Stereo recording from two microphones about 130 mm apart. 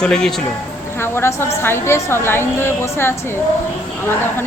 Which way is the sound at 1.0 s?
20° left (ahead or behind).